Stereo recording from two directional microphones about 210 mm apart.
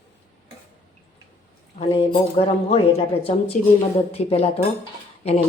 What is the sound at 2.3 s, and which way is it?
Speech, 25° left (ahead or behind).